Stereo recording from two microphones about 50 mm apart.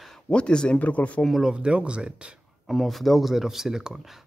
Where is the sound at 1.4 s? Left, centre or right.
Centre.